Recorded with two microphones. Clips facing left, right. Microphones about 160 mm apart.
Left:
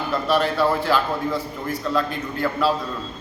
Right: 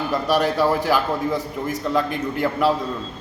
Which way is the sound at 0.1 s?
15° right (ahead or behind).